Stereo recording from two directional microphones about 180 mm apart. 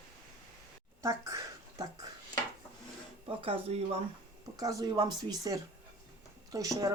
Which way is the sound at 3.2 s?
30° right (ahead or behind).